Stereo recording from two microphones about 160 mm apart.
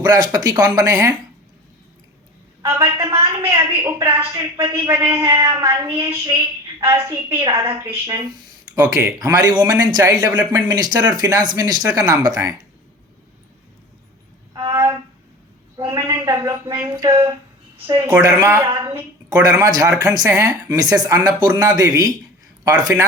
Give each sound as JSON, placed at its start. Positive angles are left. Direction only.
{"t": 0.0, "sound": "a man's voice", "side_deg": -25}
{"t": 2.6, "sound": "a woman's voice", "side_deg": -15}
{"t": 7.9, "sound": "a man's voice", "side_deg": -25}
{"t": 8.8, "sound": "a woman's voice", "side_deg": -10}
{"t": 9.1, "sound": "a man's voice", "side_deg": -25}
{"t": 14.7, "sound": "a sound", "side_deg": -15}
{"t": 16.0, "sound": "a man's voice", "side_deg": -20}